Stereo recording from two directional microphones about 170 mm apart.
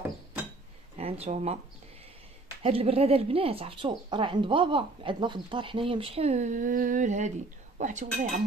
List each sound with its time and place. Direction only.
1.2 s speech: 40° right (ahead or behind)
2.6 s speech: 35° right (ahead or behind)